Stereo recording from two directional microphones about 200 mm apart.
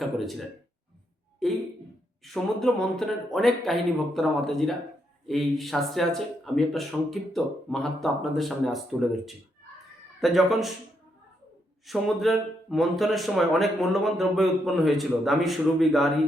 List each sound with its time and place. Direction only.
0.0 s speech: centre (ahead or behind)
11.9 s speech: centre (ahead or behind)